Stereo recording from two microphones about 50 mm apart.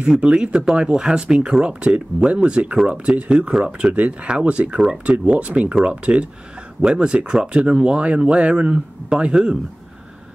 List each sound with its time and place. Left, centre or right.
0.0 s speech: centre